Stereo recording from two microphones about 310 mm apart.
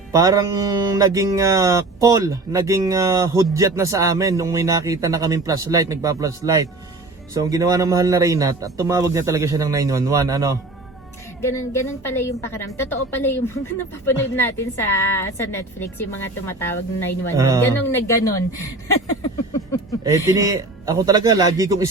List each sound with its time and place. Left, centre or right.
0.1 s speech: centre
11.7 s a woman's voice: centre
14.3 s a woman's voice: centre
17.3 s speech: centre
17.7 s a woman's voice: centre
19.2 s a sound: centre
20.1 s speech: centre